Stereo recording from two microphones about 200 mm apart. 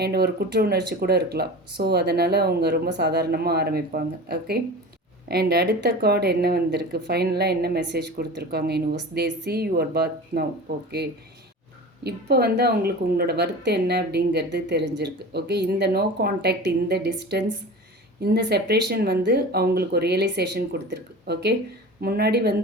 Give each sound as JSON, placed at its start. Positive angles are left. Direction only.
{"t": 0.0, "sound": "speech", "side_deg": -50}
{"t": 12.0, "sound": "speech", "side_deg": -55}